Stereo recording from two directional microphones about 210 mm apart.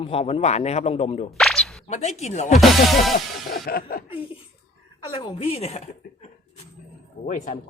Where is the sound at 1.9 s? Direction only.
30° left (ahead or behind).